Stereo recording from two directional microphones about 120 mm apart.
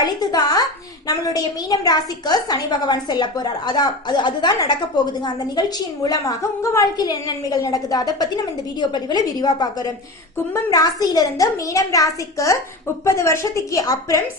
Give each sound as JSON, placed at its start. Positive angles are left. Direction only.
{"t": 0.0, "sound": "a woman's voice", "side_deg": 35}